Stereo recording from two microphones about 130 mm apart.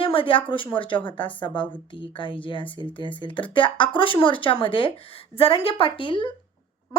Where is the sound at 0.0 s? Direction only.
45° left (ahead or behind).